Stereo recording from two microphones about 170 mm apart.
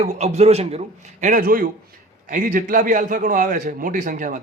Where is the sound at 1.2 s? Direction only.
55° right (ahead or behind).